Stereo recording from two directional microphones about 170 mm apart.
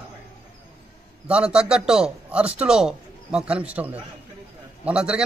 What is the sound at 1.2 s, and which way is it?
A man's voice, 5° right (ahead or behind).